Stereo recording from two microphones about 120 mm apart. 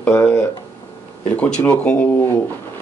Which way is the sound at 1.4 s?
10° left (ahead or behind).